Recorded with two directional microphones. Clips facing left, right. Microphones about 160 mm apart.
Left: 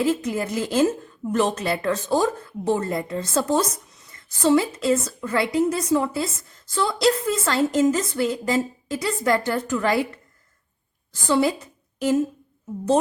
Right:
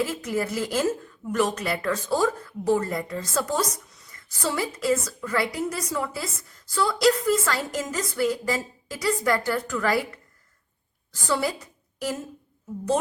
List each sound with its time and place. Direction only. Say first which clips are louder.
0.0 s a woman's voice: left 4 dB; 20° left (ahead or behind)
11.3 s a woman's voice: left 6 dB; 20° left (ahead or behind)